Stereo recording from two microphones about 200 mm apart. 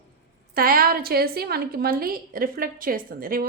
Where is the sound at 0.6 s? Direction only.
45° right (ahead or behind).